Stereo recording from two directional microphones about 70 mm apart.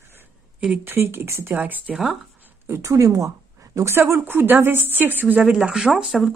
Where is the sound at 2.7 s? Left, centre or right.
Right.